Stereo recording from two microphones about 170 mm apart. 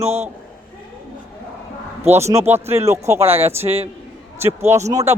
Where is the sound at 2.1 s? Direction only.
15° right (ahead or behind).